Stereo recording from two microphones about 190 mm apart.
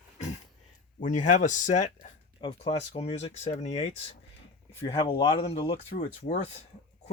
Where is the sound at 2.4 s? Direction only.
30° left (ahead or behind).